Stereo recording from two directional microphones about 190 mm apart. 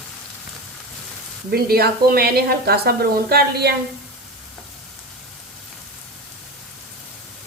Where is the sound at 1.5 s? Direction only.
55° right (ahead or behind).